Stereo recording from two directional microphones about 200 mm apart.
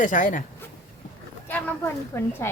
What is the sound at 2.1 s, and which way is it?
Speech, 15° left (ahead or behind).